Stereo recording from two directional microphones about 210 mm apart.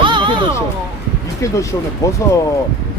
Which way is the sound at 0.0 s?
25° right (ahead or behind).